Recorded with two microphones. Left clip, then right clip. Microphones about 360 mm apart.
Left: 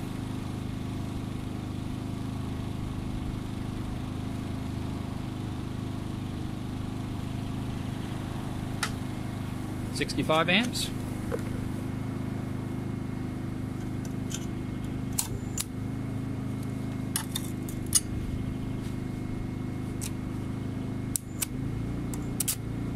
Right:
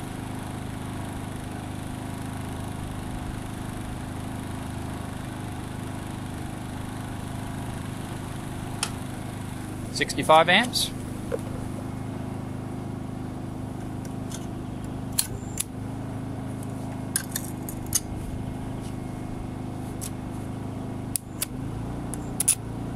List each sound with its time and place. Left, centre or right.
9.9 s speech: centre